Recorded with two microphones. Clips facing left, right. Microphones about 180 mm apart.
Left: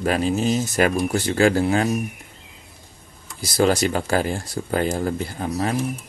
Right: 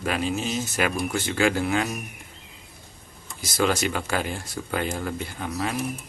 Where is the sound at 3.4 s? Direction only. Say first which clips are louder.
Left 5 dB; 35° left (ahead or behind).